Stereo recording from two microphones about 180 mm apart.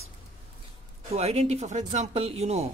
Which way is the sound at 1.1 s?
35° right (ahead or behind).